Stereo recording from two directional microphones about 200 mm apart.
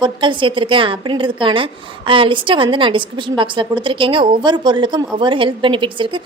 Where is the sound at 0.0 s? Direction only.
25° right (ahead or behind).